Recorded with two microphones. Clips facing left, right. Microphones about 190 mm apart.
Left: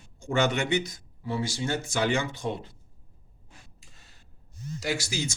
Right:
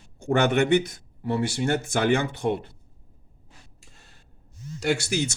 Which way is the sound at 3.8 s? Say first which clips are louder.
Right 3 dB; 65° right (ahead or behind).